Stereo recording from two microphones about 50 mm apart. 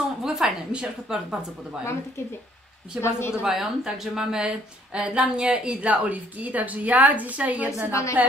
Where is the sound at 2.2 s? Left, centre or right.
Left.